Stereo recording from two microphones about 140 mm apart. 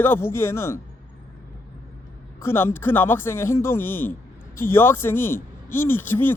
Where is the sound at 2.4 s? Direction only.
15° left (ahead or behind).